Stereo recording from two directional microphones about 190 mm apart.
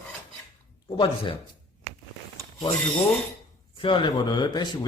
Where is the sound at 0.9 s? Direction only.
25° left (ahead or behind).